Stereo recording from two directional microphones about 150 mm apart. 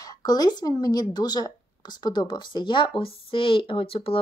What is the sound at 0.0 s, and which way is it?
Speech, 25° left (ahead or behind).